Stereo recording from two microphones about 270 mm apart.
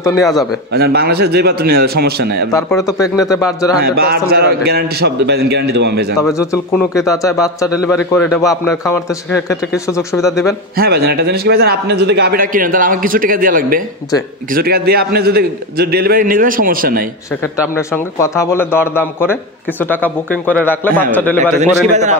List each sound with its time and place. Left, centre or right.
0.7 s a man's voice: right
2.9 s a man's voice: centre
3.8 s a man's voice: right
6.3 s a man's voice: centre
10.8 s a man's voice: right
17.7 s a man's voice: centre
21.5 s a man's voice: right